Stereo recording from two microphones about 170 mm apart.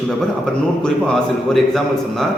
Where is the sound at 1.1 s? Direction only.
Centre (ahead or behind).